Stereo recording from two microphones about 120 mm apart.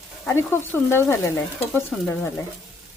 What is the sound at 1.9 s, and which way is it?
Stir, 5° left (ahead or behind).